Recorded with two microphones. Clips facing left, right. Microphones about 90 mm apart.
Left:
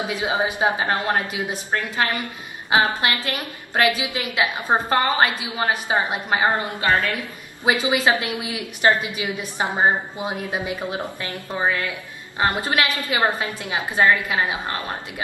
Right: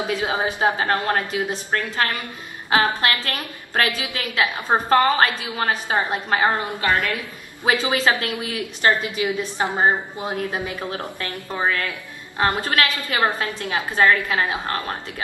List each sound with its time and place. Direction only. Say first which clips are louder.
0.0 s a woman's voice: even; 15° left (ahead or behind)
7.6 s a woman's voice: even; 15° left (ahead or behind)